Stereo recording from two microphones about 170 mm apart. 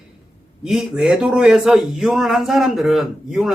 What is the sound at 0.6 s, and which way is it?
Speech, centre (ahead or behind).